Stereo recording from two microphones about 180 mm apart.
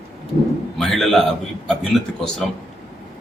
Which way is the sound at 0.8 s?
Centre (ahead or behind).